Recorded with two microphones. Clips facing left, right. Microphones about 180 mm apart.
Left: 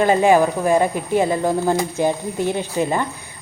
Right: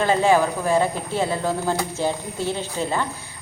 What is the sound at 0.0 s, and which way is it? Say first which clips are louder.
Speech: left 4 dB; 15° left (ahead or behind).